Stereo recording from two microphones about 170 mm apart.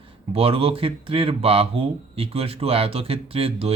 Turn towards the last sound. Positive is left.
turn(degrees=-35)  # may be behind; listen again after turning